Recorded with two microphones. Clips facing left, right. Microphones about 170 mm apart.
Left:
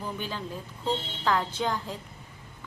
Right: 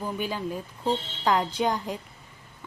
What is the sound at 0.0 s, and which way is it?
A woman's voice, 10° right (ahead or behind).